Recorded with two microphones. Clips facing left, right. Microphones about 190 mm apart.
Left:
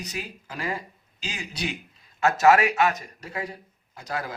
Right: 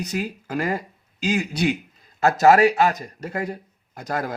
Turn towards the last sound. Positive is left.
turn(degrees=-50)  # may be behind; listen again after turning